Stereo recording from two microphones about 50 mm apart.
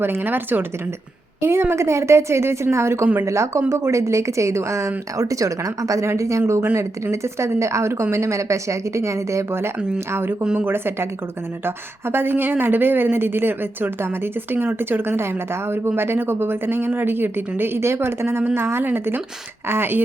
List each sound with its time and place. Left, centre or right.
0.0 s a woman's voice: right
1.4 s a woman's voice: right
3.2 s a woman's voice: right
3.7 s speech: right
6.4 s a woman's voice: right
6.7 s speech: right
8.1 s a woman's voice: right
9.5 s a woman's voice: right